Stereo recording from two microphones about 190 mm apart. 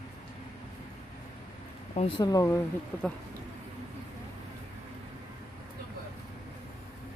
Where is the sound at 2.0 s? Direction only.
25° left (ahead or behind).